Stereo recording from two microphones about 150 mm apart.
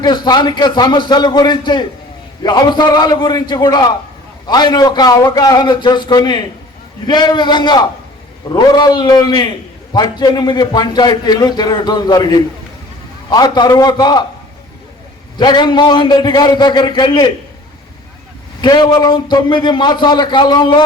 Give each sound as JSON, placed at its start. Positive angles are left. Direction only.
{"t": 0.0, "sound": "a man's voice", "side_deg": 30}
{"t": 15.4, "sound": "a man's voice", "side_deg": 30}
{"t": 18.6, "sound": "a man's voice", "side_deg": 30}